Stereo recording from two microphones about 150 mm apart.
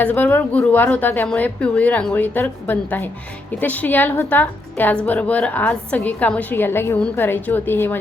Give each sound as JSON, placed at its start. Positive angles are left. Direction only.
{"t": 0.0, "sound": "a woman's voice", "side_deg": 10}